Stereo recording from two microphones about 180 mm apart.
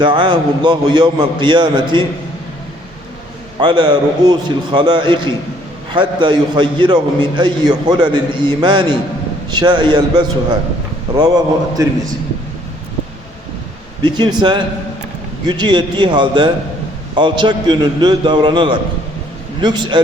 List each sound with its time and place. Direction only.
0.0 s a man's voice: 25° right (ahead or behind)
3.6 s a man's voice: 25° right (ahead or behind)
14.0 s a man's voice: 25° right (ahead or behind)